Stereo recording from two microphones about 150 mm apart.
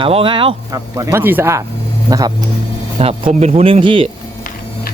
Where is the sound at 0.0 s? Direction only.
35° right (ahead or behind).